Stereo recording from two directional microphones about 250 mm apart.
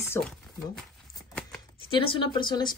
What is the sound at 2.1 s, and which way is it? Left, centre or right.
Speech, centre.